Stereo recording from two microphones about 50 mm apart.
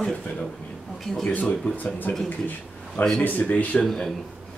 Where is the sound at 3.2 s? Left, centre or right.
Left.